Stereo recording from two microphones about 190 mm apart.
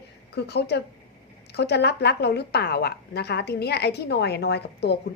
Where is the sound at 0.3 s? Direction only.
60° left (ahead or behind).